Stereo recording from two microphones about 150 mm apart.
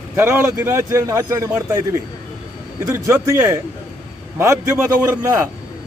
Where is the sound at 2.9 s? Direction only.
20° right (ahead or behind).